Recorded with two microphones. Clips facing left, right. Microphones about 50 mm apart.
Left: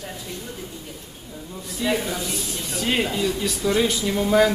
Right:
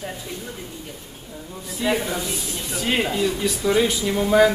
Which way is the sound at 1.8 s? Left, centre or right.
Centre.